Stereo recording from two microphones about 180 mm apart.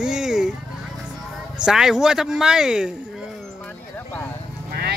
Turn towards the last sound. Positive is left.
turn(degrees=-60)  # may be behind; listen again after turning